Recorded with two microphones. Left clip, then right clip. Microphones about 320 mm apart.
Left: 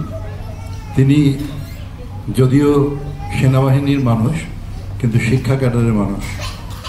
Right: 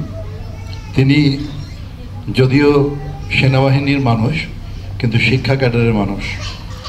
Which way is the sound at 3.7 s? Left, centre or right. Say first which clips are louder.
Right 1 dB; centre.